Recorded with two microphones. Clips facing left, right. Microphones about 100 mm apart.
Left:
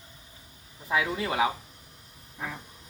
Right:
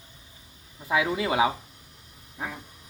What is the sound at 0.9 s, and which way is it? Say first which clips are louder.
Speech: right 3 dB; 20° right (ahead or behind).